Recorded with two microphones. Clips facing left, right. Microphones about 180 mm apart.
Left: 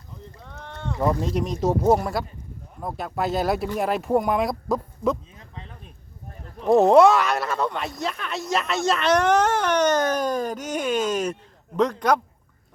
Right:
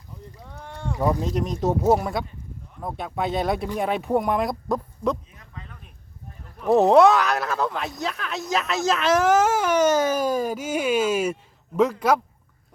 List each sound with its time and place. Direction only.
0.3 s boat: 10° right (ahead or behind)
1.2 s speech: centre (ahead or behind)
5.4 s a sound: 30° left (ahead or behind)
6.7 s speech: centre (ahead or behind)